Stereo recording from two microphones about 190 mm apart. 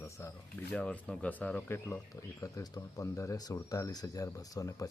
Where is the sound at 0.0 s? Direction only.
15° left (ahead or behind).